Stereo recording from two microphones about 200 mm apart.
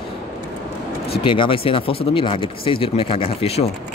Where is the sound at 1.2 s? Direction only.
25° left (ahead or behind).